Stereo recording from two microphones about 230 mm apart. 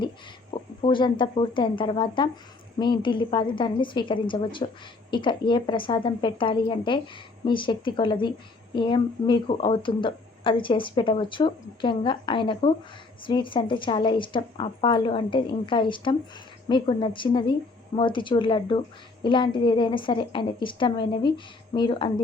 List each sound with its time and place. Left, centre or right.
0.8 s speech: left